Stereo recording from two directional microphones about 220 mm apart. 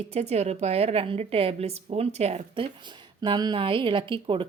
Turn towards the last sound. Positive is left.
turn(degrees=-25)  # may be behind; listen again after turning